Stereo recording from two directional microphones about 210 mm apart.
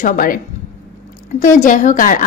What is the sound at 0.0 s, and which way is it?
Speech, 40° left (ahead or behind).